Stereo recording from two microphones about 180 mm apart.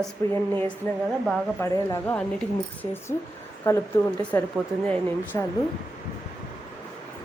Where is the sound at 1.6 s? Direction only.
15° left (ahead or behind).